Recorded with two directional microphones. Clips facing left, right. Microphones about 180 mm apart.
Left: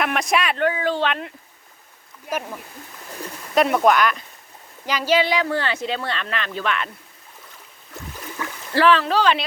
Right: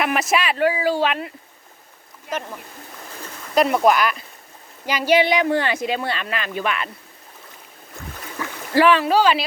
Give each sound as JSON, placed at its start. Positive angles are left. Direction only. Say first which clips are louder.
{"t": 0.0, "sound": "speech", "louder": "right 1 dB", "side_deg": -5}
{"t": 2.3, "sound": "speech", "louder": "left 1 dB", "side_deg": 5}
{"t": 8.7, "sound": "speech", "louder": "right 2 dB", "side_deg": -15}